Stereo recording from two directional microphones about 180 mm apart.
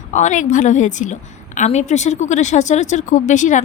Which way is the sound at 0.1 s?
40° left (ahead or behind).